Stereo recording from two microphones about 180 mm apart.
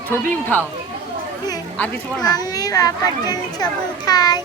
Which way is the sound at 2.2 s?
20° left (ahead or behind).